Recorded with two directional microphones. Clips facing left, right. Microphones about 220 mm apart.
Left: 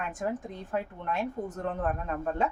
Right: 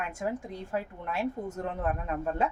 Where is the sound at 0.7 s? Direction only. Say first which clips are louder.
Left 2 dB; 5° right (ahead or behind).